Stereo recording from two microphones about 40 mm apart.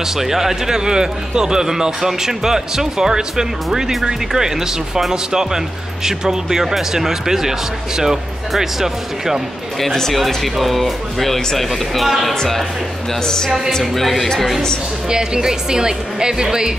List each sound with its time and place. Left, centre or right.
0.0 s speech: centre
9.8 s speech: centre
13.1 s speech: centre
15.0 s speech: centre